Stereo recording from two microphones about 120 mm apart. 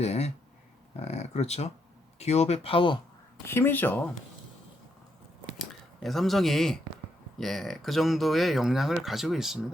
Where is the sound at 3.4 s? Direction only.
20° left (ahead or behind).